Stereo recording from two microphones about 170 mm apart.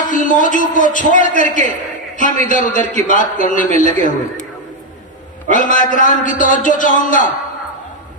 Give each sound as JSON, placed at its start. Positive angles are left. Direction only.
{"t": 0.1, "sound": "a man's voice", "side_deg": 50}
{"t": 5.5, "sound": "a man's voice", "side_deg": 50}